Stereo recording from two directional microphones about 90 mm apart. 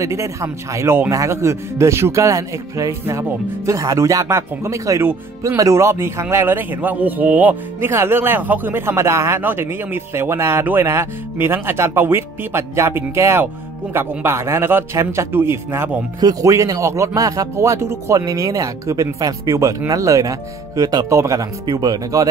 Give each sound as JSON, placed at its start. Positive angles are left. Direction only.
{"t": 0.0, "sound": "a man's voice", "side_deg": -35}
{"t": 16.2, "sound": "a man's voice", "side_deg": -45}